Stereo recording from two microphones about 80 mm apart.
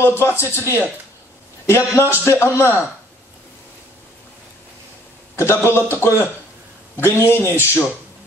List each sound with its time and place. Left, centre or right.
0.0 s speech: left
2.0 s speech: left
5.3 s a man's voice: left